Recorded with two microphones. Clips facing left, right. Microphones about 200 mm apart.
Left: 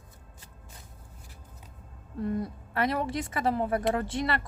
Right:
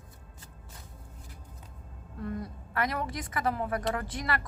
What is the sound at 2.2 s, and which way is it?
A woman's voice, 25° left (ahead or behind).